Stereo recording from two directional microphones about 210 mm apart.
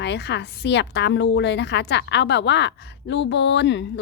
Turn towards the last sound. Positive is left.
turn(degrees=55)  # may be behind; listen again after turning